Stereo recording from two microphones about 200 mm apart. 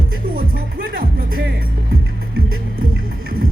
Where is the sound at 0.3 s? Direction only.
45° right (ahead or behind).